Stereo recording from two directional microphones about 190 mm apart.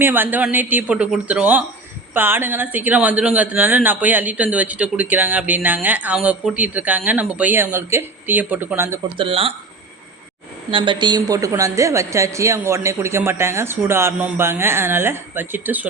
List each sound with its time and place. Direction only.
0.0 s speech: 10° right (ahead or behind)
9.1 s speech: 30° right (ahead or behind)
10.7 s speech: 25° right (ahead or behind); by 15.9 s 10° right (ahead or behind)